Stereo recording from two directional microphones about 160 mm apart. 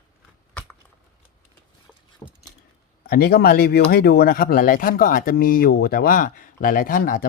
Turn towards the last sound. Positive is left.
turn(degrees=60)  # may be behind; listen again after turning